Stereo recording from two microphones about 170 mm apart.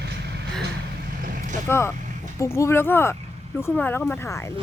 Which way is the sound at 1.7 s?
15° left (ahead or behind).